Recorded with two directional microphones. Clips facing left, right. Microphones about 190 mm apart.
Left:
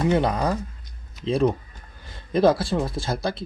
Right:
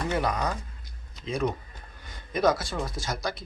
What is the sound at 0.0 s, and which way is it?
Speech, 25° left (ahead or behind).